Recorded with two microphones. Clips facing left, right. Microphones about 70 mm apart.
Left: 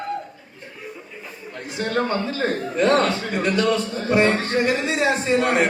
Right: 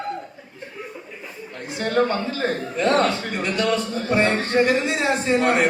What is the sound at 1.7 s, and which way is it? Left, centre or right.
Speech, right.